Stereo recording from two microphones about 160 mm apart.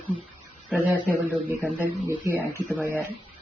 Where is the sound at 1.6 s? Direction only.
15° right (ahead or behind).